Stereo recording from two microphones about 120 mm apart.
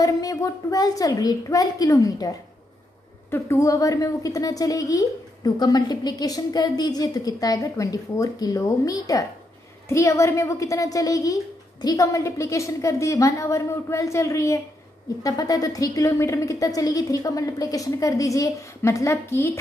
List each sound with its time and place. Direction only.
0.0 s a woman's voice: 30° left (ahead or behind)